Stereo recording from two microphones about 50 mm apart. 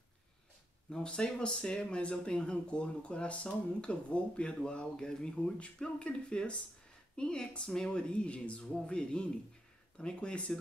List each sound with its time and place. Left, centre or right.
0.8 s speech: centre